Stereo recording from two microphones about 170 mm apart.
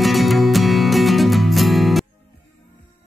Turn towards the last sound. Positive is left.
turn(degrees=0)  # may be behind; listen again after turning